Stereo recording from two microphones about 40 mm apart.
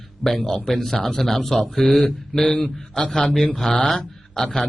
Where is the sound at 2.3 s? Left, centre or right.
Left.